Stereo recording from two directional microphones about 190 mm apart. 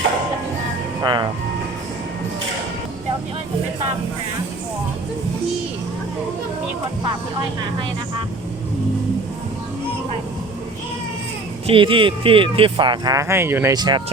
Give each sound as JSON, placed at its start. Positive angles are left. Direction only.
{"t": 1.0, "sound": "speech", "side_deg": -25}
{"t": 11.6, "sound": "speech", "side_deg": -25}